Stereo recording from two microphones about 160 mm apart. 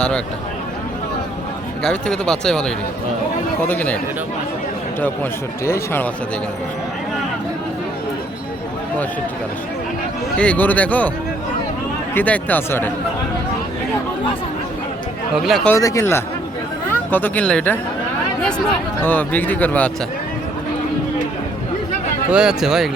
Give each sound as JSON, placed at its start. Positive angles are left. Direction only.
{"t": 1.8, "sound": "speech", "side_deg": 5}
{"t": 10.3, "sound": "speech", "side_deg": 10}
{"t": 12.1, "sound": "speech", "side_deg": 10}
{"t": 15.4, "sound": "speech", "side_deg": 0}
{"t": 15.7, "sound": "speech", "side_deg": 20}
{"t": 22.3, "sound": "speech", "side_deg": -5}